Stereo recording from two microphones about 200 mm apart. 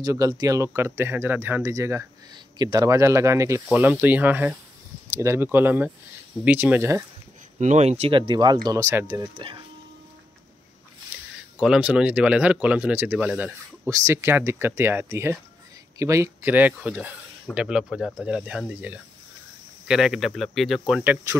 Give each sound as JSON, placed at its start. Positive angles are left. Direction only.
{"t": 0.0, "sound": "speech", "side_deg": -15}
{"t": 7.5, "sound": "speech", "side_deg": -35}
{"t": 11.6, "sound": "speech", "side_deg": -5}